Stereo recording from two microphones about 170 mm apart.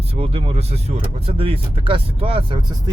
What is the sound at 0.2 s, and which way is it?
Speech, 35° right (ahead or behind).